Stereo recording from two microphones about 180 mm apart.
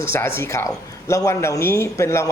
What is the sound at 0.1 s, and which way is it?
A man's voice, 15° left (ahead or behind).